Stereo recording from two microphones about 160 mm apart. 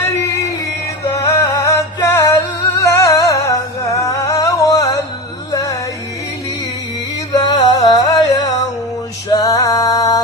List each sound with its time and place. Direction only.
1.0 s music: 20° left (ahead or behind)
2.7 s humming: 20° left (ahead or behind)
5.5 s music: 20° left (ahead or behind)
7.3 s music: 25° left (ahead or behind)